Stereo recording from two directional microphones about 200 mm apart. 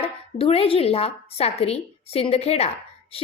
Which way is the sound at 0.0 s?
30° left (ahead or behind).